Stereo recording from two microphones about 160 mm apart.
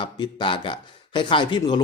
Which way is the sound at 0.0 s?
30° left (ahead or behind).